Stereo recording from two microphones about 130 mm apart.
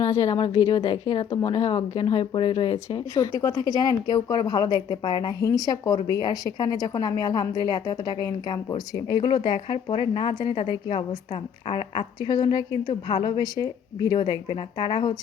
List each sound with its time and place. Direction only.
0.0 s a woman's voice: 25° left (ahead or behind); by 2.7 s 40° left (ahead or behind)
3.2 s a woman's voice: 25° left (ahead or behind); by 12.0 s 40° left (ahead or behind)
12.3 s a woman's voice: 30° left (ahead or behind)